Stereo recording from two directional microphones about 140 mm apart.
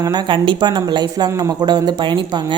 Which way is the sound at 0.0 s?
35° right (ahead or behind).